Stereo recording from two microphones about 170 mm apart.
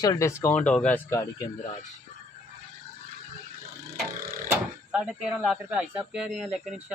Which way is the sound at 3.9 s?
60° right (ahead or behind).